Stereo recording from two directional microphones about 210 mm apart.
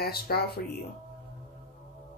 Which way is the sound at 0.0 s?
50° left (ahead or behind).